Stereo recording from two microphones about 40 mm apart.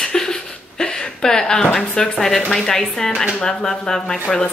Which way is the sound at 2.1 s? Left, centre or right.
Centre.